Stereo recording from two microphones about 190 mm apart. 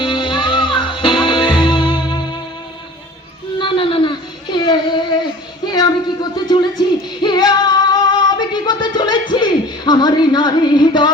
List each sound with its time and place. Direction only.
0.0 s music: 25° left (ahead or behind)
3.6 s a sound: 25° left (ahead or behind)
7.2 s music: 20° left (ahead or behind)